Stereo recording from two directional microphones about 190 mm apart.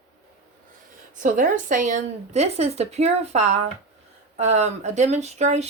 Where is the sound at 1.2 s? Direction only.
45° right (ahead or behind).